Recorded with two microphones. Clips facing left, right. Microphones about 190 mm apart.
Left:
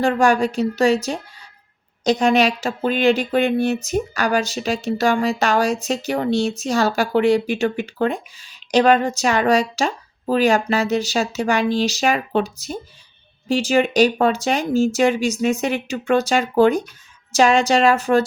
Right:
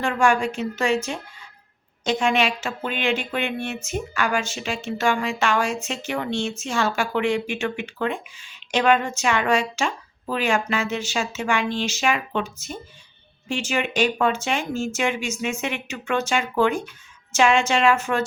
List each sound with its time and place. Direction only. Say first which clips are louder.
0.0 s speech: left 4 dB; 35° left (ahead or behind)